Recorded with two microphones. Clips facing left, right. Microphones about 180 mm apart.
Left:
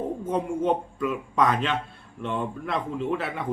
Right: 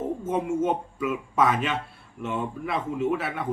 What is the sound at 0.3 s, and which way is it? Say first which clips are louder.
Speech: even; 5° right (ahead or behind).